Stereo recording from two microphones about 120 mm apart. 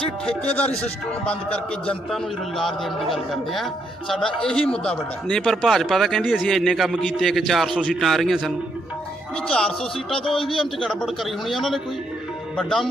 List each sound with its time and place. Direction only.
1.3 s a man's voice: 10° left (ahead or behind)
10.2 s a man's voice: 45° left (ahead or behind)
10.8 s a man's voice: centre (ahead or behind)